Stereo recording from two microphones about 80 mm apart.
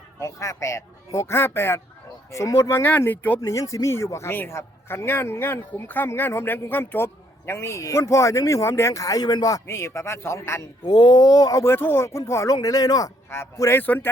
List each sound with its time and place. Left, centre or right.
0.2 s speech: left
3.4 s speech: left
9.6 s speech: left
10.8 s speech: left
11.6 s speech: left
12.6 s speech: left
13.3 s speech: left